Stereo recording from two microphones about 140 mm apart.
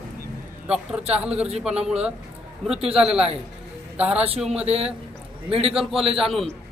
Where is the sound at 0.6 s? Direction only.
10° right (ahead or behind).